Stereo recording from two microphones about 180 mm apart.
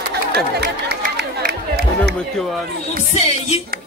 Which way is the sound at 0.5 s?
65° right (ahead or behind).